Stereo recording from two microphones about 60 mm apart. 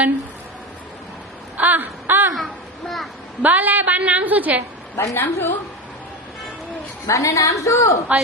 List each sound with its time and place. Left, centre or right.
1.5 s a sound: right
2.3 s a child's voice: centre
3.4 s a woman's voice: right
4.9 s a woman's voice: left
7.1 s a woman's voice: left